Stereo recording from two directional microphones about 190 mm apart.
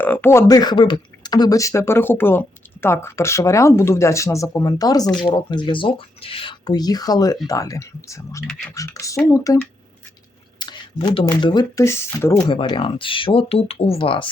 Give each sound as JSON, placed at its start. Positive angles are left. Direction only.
{"t": 0.0, "sound": "speech", "side_deg": 10}
{"t": 10.6, "sound": "speech", "side_deg": 25}
{"t": 12.5, "sound": "speech", "side_deg": 25}